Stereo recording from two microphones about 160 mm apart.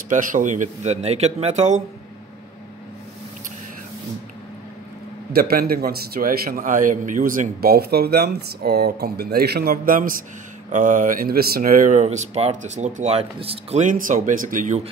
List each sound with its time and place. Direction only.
0.1 s speech: 55° right (ahead or behind)
5.3 s a man's voice: 70° right (ahead or behind); by 13.8 s 40° right (ahead or behind)
13.9 s speech: 55° right (ahead or behind)